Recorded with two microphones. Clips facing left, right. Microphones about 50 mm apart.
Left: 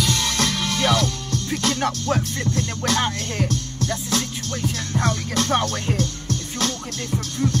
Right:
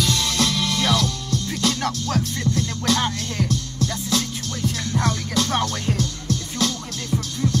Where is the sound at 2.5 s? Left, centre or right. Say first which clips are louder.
Right 1 dB; left.